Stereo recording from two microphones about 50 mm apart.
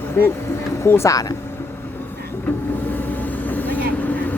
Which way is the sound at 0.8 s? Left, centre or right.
Left.